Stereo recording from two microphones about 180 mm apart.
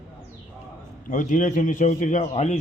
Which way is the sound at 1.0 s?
45° left (ahead or behind).